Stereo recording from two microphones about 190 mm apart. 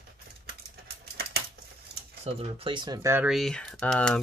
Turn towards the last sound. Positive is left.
turn(degrees=5)  # may be behind; listen again after turning